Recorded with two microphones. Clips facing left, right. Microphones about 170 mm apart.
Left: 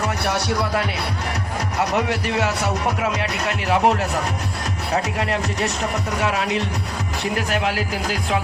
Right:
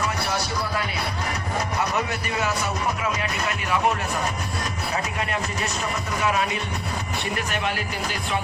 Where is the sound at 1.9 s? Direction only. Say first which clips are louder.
Left 5 dB; 75° left (ahead or behind).